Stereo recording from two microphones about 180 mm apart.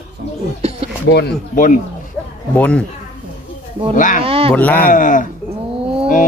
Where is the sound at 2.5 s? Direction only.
5° left (ahead or behind).